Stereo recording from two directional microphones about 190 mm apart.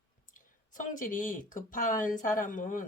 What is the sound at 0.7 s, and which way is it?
Speech, 45° left (ahead or behind).